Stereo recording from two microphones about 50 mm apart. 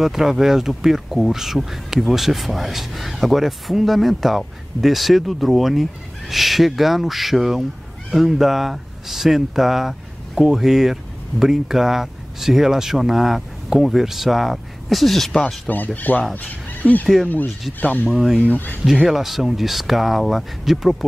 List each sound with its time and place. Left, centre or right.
0.0 s speech: centre
15.7 s speech: left
18.0 s speech: centre